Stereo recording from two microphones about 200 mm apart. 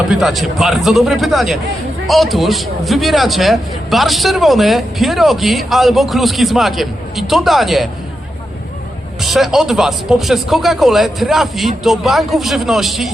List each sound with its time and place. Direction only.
0.1 s a man's voice: centre (ahead or behind)
9.2 s a man's voice: centre (ahead or behind)